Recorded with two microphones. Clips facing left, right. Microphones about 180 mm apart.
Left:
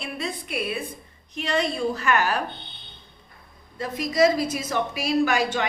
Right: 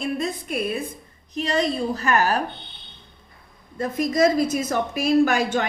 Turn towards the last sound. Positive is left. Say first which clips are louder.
# right 3 dB
turn(degrees=-45)  # may be behind; listen again after turning